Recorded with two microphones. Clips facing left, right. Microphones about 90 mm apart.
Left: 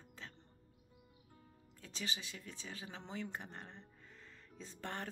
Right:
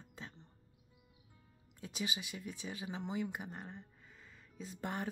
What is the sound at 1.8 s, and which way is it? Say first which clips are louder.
Speech: right 4 dB; 15° right (ahead or behind).